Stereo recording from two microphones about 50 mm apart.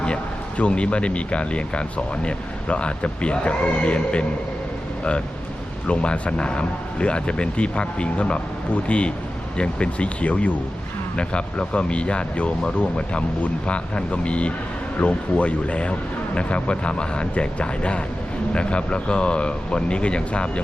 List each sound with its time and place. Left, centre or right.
0.0 s speech: left
5.9 s speech: left